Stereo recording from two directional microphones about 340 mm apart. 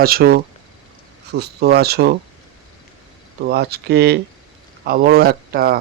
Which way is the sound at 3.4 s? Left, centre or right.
Right.